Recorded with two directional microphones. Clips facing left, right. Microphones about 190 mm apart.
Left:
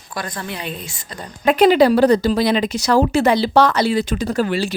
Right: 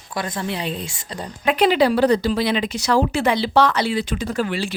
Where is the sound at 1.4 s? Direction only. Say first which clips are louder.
Left 4 dB; 45° left (ahead or behind).